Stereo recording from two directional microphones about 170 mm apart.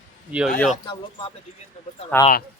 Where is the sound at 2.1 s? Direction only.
10° left (ahead or behind).